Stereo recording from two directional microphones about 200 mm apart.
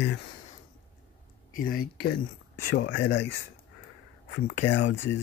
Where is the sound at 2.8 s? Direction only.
65° left (ahead or behind).